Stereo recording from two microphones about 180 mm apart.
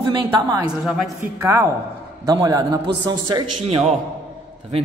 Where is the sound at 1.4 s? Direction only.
15° right (ahead or behind).